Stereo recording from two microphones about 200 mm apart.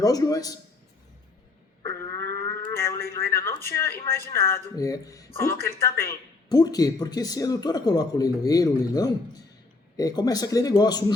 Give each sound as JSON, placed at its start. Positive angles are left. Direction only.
{"t": 0.0, "sound": "speech", "side_deg": 15}
{"t": 2.5, "sound": "a sound", "side_deg": 10}
{"t": 3.8, "sound": "speech", "side_deg": 15}